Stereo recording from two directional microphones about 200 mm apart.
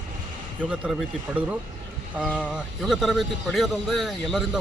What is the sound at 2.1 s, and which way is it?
Speech, 5° right (ahead or behind).